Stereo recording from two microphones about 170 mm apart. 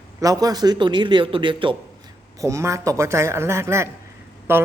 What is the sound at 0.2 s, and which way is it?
A man's voice, 20° right (ahead or behind).